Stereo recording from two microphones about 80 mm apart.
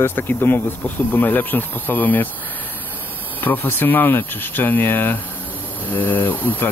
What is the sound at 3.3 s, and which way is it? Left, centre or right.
Speech, left.